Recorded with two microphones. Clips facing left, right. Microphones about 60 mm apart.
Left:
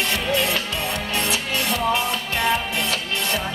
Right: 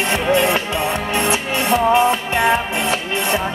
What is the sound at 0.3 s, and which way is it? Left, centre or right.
Music, right.